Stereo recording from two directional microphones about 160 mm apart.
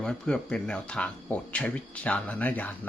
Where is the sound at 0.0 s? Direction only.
5° left (ahead or behind).